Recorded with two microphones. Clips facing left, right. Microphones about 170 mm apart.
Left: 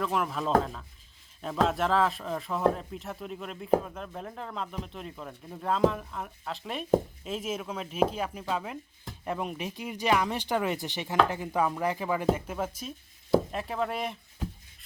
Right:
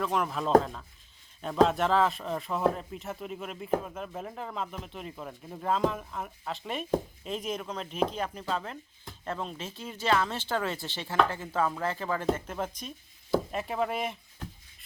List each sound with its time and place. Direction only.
0.0 s speech: centre (ahead or behind)